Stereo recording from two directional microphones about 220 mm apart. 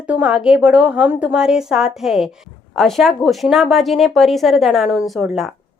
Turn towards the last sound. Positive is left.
turn(degrees=0)  # may be behind; listen again after turning